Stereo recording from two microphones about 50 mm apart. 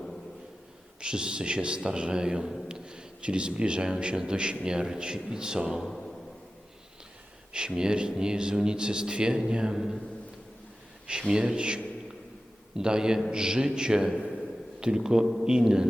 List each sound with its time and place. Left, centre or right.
0.9 s a man's voice: centre
5.8 s speech: centre
7.5 s a man's voice: centre
9.7 s a man's voice: centre
11.0 s a man's voice: right